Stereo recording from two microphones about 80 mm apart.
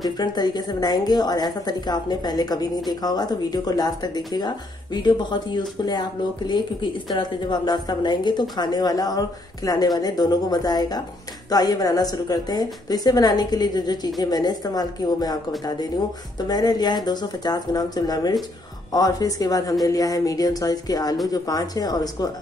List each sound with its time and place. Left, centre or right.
0.0 s a woman's voice: left
16.3 s a woman's voice: left